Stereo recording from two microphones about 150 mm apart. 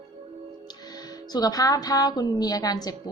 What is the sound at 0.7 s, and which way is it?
A woman's voice, 25° left (ahead or behind).